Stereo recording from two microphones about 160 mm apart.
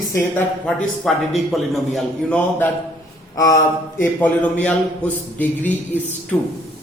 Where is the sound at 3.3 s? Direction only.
20° left (ahead or behind).